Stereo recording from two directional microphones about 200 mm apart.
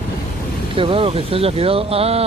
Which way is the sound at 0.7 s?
25° right (ahead or behind).